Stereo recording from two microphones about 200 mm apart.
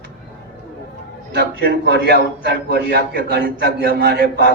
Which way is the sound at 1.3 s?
55° right (ahead or behind).